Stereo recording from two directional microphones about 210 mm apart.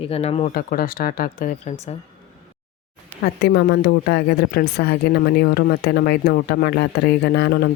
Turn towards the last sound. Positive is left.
turn(degrees=50)  # may be behind; listen again after turning